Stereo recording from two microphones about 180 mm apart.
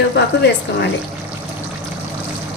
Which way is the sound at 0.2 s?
70° left (ahead or behind).